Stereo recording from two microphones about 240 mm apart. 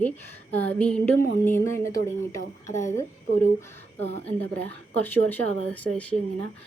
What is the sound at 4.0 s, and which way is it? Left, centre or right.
Speech, left.